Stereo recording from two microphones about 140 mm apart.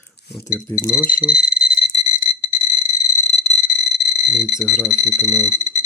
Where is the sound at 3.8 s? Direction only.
5° right (ahead or behind).